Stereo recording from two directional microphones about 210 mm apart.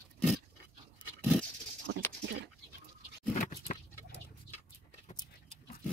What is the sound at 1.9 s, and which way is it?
Dog, 60° right (ahead or behind).